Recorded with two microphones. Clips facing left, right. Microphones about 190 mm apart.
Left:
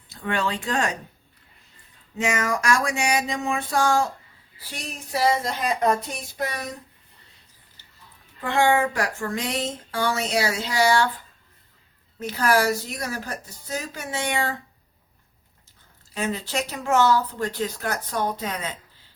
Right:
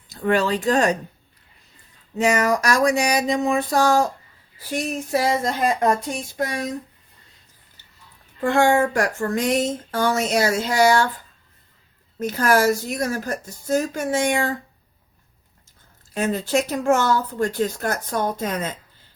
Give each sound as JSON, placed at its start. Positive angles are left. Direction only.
{"t": 0.1, "sound": "speech", "side_deg": -40}
{"t": 2.1, "sound": "a sound", "side_deg": -40}
{"t": 4.7, "sound": "speech", "side_deg": -50}
{"t": 8.4, "sound": "speech", "side_deg": -45}
{"t": 12.2, "sound": "speech", "side_deg": -45}
{"t": 16.1, "sound": "speech", "side_deg": -45}